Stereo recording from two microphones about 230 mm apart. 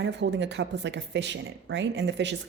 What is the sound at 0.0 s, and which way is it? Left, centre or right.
Speech, right.